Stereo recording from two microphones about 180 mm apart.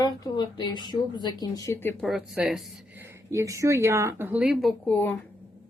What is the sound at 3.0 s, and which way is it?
Speech, 15° right (ahead or behind).